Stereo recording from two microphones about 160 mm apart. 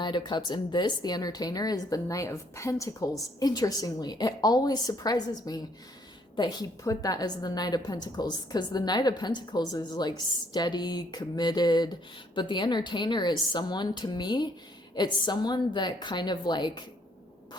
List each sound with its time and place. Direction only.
0.0 s a woman's voice: 30° left (ahead or behind)